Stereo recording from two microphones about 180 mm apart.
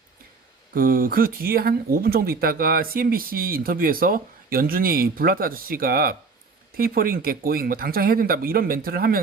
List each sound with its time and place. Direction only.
0.7 s speech: 50° right (ahead or behind)